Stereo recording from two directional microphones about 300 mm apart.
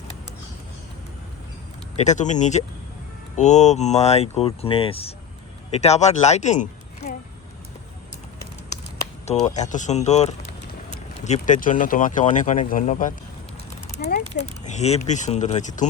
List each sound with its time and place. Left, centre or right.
2.0 s speech: left
9.2 s speech: left